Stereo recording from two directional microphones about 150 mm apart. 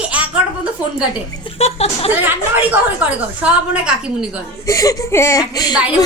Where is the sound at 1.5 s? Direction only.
45° left (ahead or behind).